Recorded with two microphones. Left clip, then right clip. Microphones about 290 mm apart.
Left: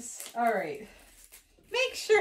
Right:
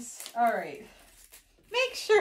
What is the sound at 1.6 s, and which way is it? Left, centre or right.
Speech, centre.